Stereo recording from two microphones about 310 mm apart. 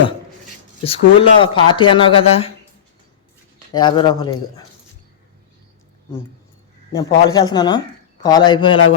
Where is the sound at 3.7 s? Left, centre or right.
Centre.